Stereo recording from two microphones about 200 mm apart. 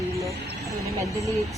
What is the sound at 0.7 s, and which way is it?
Speech, 15° right (ahead or behind).